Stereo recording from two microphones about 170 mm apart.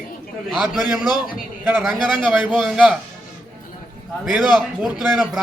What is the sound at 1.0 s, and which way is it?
Speech, 25° left (ahead or behind).